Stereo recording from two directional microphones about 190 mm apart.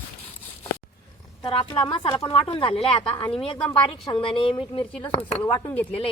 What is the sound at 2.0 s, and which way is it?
Speech, 25° left (ahead or behind).